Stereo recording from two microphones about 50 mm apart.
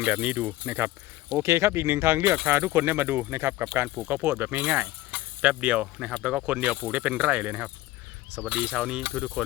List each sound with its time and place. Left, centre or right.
0.0 s speech: right
1.4 s speech: right
2.5 s speech: right
3.8 s speech: right
4.8 s speech: right